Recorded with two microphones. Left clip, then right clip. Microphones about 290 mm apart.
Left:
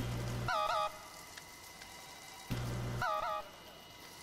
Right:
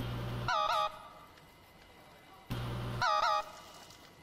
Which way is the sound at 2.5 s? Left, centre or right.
Centre.